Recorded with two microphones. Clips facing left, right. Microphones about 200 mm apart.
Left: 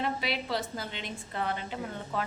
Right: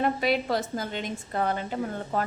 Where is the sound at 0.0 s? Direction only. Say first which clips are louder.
Right 7 dB; 50° right (ahead or behind).